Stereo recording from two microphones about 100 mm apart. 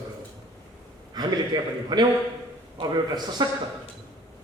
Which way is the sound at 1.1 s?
45° right (ahead or behind).